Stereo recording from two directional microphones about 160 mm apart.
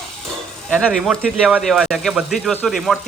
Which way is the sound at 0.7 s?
Centre (ahead or behind).